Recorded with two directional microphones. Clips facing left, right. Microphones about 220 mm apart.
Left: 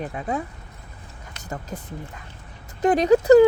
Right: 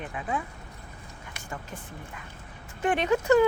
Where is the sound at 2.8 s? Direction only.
35° left (ahead or behind).